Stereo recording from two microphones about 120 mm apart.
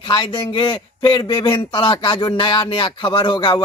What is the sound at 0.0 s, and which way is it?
A man's voice, 40° left (ahead or behind).